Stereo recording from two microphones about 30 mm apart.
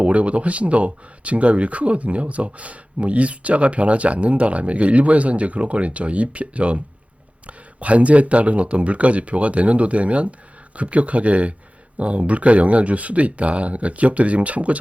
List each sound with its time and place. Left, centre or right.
0.0 s speech: right